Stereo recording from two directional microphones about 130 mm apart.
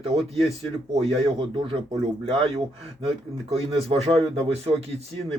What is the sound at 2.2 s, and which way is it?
Speech, 45° right (ahead or behind).